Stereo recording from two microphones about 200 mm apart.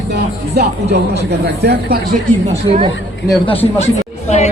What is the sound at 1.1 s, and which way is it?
Speech, 55° right (ahead or behind).